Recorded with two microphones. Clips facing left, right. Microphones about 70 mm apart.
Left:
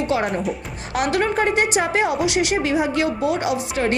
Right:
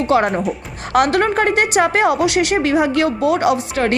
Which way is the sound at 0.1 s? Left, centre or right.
Right.